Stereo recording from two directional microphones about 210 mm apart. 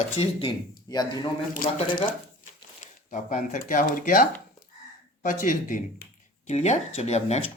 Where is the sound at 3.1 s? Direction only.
35° left (ahead or behind).